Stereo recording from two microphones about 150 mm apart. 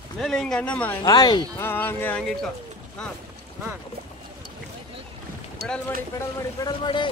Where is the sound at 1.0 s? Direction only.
25° left (ahead or behind).